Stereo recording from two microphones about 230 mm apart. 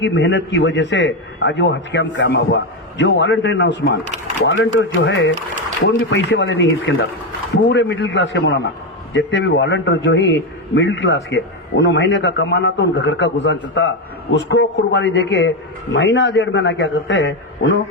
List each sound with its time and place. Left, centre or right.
0.0 s a man's voice: left